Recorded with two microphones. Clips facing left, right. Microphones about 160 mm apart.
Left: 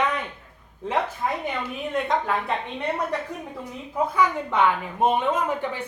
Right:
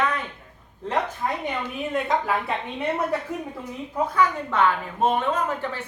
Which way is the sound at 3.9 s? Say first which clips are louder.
Even; 10° left (ahead or behind).